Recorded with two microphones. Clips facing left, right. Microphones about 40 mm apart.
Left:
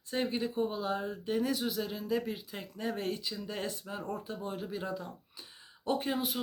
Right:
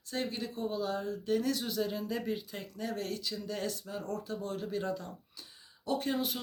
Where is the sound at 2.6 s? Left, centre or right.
Centre.